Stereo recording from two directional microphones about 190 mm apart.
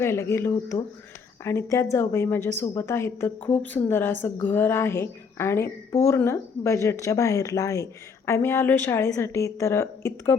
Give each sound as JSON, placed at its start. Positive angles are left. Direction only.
{"t": 0.0, "sound": "a woman's voice", "side_deg": 15}